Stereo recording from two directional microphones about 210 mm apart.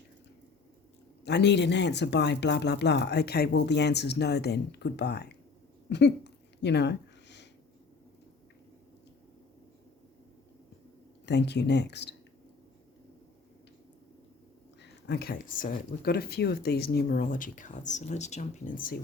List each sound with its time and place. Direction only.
1.2 s speech: 55° left (ahead or behind)
5.9 s a sound: 55° left (ahead or behind)
11.3 s speech: 55° left (ahead or behind)
14.8 s speech: 55° left (ahead or behind); by 18.9 s 40° left (ahead or behind)